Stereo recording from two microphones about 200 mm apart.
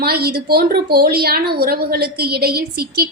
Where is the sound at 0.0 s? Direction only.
50° right (ahead or behind).